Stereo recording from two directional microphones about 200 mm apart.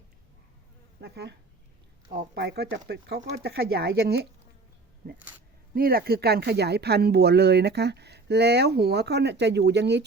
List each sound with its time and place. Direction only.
1.0 s speech: 55° right (ahead or behind)
5.7 s speech: 50° right (ahead or behind)